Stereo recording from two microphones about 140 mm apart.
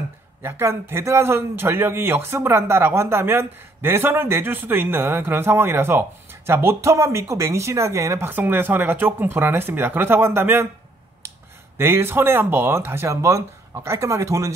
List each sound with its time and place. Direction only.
0.4 s a man's voice: 15° right (ahead or behind)
11.8 s a man's voice: 15° right (ahead or behind)